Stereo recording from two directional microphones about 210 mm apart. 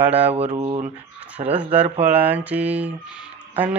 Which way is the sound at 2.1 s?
10° right (ahead or behind).